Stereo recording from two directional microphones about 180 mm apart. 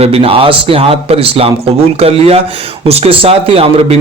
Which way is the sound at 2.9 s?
30° right (ahead or behind).